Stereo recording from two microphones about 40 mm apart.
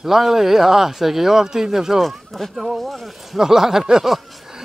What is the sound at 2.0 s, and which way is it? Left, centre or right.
Speech, centre.